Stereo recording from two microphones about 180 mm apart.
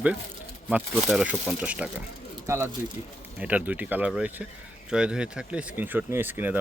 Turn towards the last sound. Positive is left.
turn(degrees=-10)  # may be behind; listen again after turning